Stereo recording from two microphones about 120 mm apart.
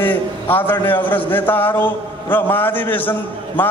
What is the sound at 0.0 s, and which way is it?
A man's voice, 15° left (ahead or behind).